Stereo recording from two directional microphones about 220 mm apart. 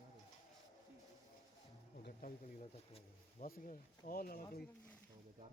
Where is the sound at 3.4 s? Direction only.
40° left (ahead or behind).